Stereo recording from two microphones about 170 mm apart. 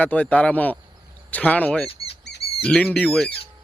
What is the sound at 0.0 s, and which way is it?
Speech, 10° left (ahead or behind).